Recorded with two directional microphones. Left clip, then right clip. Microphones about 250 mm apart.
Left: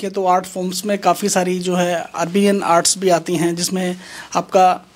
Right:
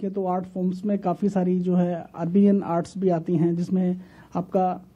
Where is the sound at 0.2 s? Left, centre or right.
Centre.